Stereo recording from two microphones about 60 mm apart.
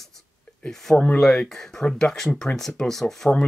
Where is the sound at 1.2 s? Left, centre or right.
Centre.